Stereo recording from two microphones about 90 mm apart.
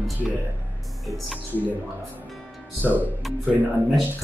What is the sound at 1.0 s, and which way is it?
Speech, centre (ahead or behind).